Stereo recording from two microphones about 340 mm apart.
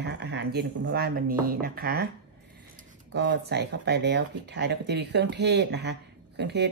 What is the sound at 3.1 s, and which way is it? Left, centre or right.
Speech, right.